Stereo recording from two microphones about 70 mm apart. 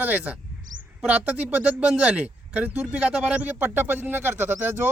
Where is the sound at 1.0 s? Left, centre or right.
Centre.